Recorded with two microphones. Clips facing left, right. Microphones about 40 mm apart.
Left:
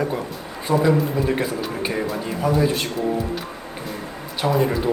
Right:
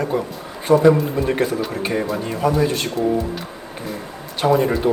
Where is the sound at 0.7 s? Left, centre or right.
Right.